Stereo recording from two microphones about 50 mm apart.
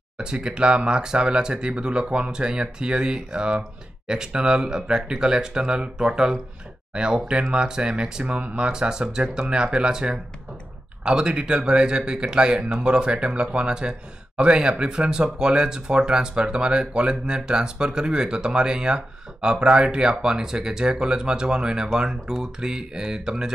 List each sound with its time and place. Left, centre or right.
0.2 s speech: centre